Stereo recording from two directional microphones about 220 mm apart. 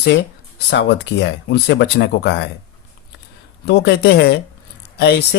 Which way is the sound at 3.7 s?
50° left (ahead or behind).